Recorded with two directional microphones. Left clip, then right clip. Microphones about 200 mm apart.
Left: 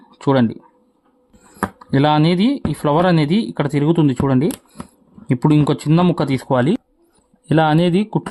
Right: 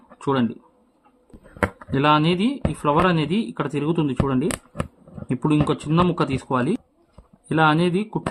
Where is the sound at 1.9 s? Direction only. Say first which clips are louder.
Left 3 dB; 40° left (ahead or behind).